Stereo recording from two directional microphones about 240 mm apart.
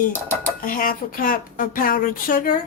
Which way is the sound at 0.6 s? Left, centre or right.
Left.